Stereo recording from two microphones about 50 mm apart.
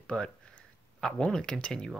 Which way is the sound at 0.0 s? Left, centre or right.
Centre.